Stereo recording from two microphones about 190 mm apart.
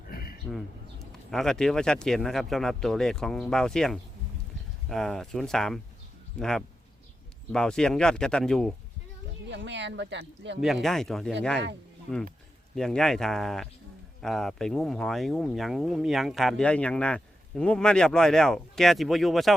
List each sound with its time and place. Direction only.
0.1 s a sound: 50° left (ahead or behind)
1.3 s speech: centre (ahead or behind)
9.5 s speech: 70° right (ahead or behind)
10.6 s speech: centre (ahead or behind)
12.7 s speech: 5° left (ahead or behind)